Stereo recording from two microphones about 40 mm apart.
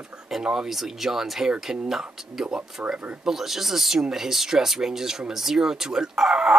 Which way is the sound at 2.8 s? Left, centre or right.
Right.